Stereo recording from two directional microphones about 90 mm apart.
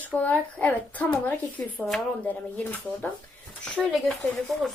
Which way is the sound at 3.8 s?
Centre (ahead or behind).